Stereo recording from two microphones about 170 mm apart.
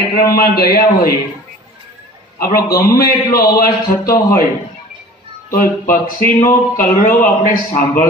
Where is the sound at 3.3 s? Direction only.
60° left (ahead or behind).